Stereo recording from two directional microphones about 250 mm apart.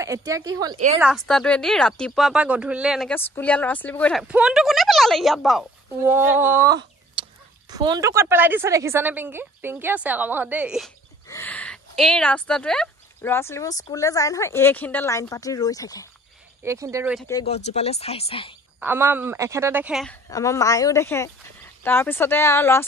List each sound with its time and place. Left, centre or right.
0.0 s a woman's voice: centre
1.0 s a woman's voice: centre
11.2 s speech: centre
16.6 s a woman's voice: centre
17.3 s speech: centre
18.8 s a woman's voice: centre
20.2 s speech: centre